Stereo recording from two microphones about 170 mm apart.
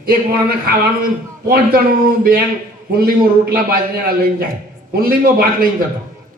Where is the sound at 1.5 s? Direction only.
60° right (ahead or behind).